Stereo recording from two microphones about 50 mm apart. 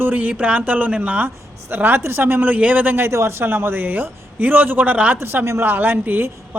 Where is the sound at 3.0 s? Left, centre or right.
Right.